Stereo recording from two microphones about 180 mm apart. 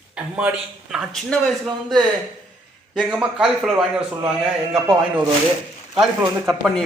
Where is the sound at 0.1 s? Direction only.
5° right (ahead or behind).